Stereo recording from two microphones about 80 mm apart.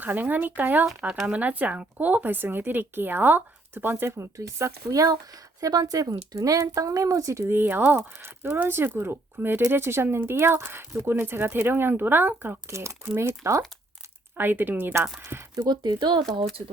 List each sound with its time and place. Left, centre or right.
0.0 s speech: right
4.4 s speech: right
14.3 s speech: right
15.6 s speech: right